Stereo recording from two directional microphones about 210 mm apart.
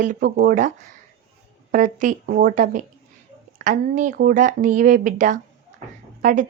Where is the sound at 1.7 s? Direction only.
40° right (ahead or behind).